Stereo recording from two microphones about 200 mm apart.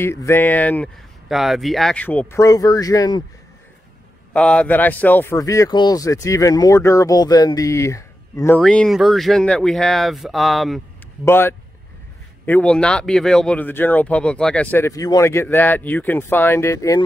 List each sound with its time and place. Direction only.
0.0 s speech: 10° left (ahead or behind)
4.3 s speech: 5° left (ahead or behind)
8.5 s speech: 5° left (ahead or behind)
11.2 s speech: 10° left (ahead or behind)